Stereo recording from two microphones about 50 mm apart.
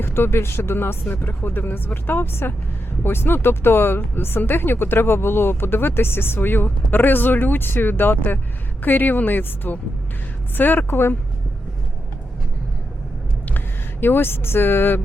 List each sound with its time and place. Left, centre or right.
0.0 s speech: left
1.1 s speech: left
14.0 s speech: left